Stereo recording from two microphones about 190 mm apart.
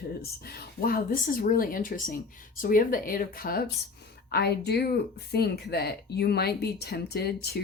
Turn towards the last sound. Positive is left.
turn(degrees=55)  # may be behind; listen again after turning